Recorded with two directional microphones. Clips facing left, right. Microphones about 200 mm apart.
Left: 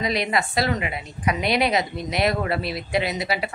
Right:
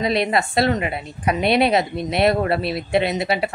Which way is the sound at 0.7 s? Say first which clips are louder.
Right 4 dB; 45° right (ahead or behind).